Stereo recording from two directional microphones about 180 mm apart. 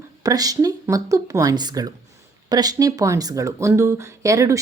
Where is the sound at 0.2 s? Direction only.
20° right (ahead or behind).